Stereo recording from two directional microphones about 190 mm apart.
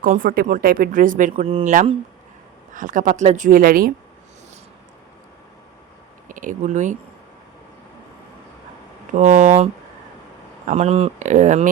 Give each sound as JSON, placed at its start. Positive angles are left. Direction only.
{"t": 0.0, "sound": "speech", "side_deg": -45}
{"t": 6.2, "sound": "speech", "side_deg": -45}
{"t": 9.1, "sound": "speech", "side_deg": -40}
{"t": 10.7, "sound": "speech", "side_deg": -35}